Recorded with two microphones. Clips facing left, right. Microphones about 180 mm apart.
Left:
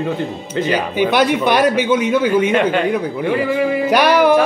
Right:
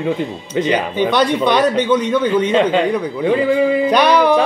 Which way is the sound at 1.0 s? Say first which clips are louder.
Left 1 dB; 10° left (ahead or behind).